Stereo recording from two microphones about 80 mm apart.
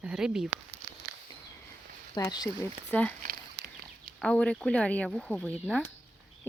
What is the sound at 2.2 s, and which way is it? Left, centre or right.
Speech, left.